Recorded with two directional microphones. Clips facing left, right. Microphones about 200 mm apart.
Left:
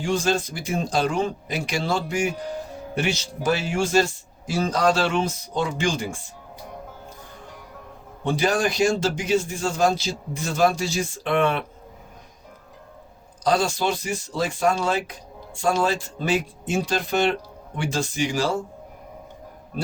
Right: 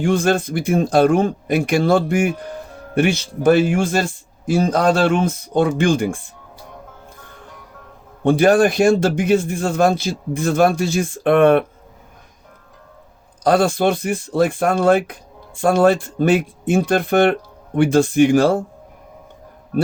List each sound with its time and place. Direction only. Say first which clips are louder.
0.0 s speech: right 6 dB; 55° right (ahead or behind)
8.2 s speech: right 9 dB; 55° right (ahead or behind)
13.4 s speech: right 7 dB; 55° right (ahead or behind)